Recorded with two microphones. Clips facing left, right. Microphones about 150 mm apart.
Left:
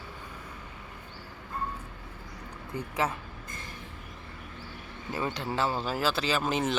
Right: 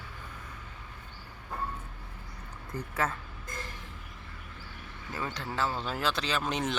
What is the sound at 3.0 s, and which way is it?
Speech, 15° left (ahead or behind).